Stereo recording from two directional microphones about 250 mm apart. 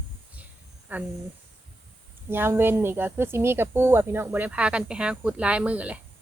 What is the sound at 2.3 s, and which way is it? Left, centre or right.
Speech, centre.